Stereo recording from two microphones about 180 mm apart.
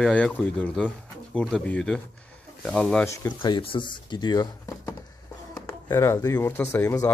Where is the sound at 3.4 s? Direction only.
30° left (ahead or behind).